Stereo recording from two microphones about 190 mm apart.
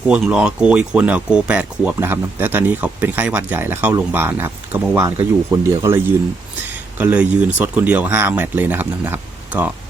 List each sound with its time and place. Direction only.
0.1 s speech: 5° right (ahead or behind)
7.0 s speech: 10° right (ahead or behind)